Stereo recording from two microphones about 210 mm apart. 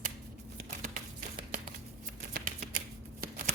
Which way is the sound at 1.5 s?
40° right (ahead or behind).